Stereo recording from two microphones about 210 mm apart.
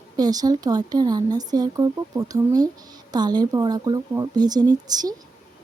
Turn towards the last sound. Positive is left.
turn(degrees=-20)  # may be behind; listen again after turning